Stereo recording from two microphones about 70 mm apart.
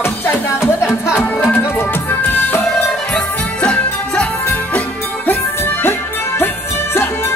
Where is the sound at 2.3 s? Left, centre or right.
Left.